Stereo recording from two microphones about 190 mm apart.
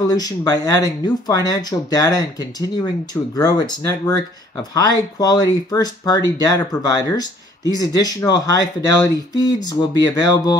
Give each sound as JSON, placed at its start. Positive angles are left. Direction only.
{"t": 0.0, "sound": "speech", "side_deg": 20}
{"t": 3.3, "sound": "speech", "side_deg": 20}